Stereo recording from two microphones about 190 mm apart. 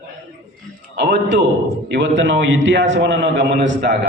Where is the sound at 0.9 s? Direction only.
65° right (ahead or behind).